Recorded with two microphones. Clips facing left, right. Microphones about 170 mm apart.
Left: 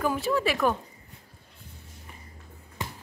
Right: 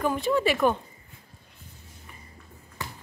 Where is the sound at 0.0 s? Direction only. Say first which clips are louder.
Right 2 dB; 5° left (ahead or behind).